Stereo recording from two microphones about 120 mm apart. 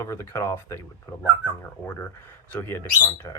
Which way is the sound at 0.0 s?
25° left (ahead or behind).